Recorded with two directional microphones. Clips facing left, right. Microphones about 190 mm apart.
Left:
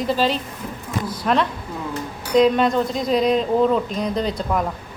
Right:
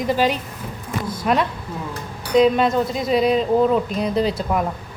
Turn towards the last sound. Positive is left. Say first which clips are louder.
# right 2 dB
turn(degrees=-5)  # may be behind; listen again after turning